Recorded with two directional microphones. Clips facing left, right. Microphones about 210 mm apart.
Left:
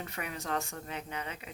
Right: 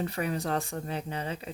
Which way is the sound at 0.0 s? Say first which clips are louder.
Right 9 dB; 35° right (ahead or behind).